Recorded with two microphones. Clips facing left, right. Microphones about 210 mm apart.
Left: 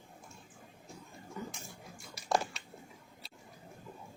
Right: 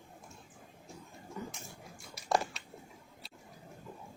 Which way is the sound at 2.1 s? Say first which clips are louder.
Right 1 dB; centre (ahead or behind).